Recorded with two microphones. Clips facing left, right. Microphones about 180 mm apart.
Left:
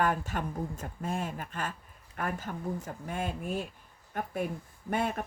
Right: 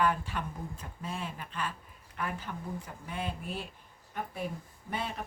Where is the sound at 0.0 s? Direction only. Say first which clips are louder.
Left 1 dB; 45° left (ahead or behind).